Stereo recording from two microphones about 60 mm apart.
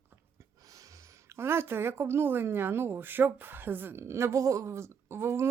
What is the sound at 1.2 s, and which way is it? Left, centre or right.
Speech, right.